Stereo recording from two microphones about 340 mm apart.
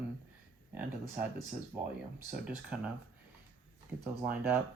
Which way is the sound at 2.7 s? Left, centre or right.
Centre.